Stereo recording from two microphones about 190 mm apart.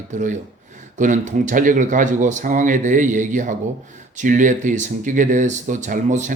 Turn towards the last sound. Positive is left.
turn(degrees=-40)  # may be behind; listen again after turning